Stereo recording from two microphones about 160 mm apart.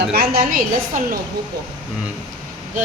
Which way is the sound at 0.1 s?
70° right (ahead or behind).